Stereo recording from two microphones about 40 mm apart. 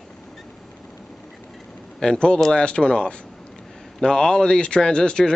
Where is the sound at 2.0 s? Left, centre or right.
Centre.